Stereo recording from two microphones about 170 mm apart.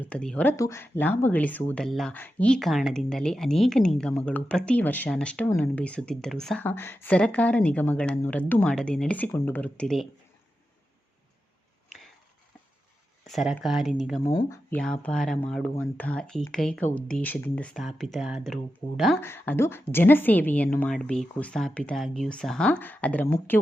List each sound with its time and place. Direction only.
0.0 s a woman's voice: 5° left (ahead or behind)
0.5 s a woman's voice: 15° left (ahead or behind)
13.2 s speech: centre (ahead or behind)
14.3 s speech: 20° left (ahead or behind)
14.8 s speech: 5° left (ahead or behind)
19.2 s a woman's voice: 15° left (ahead or behind)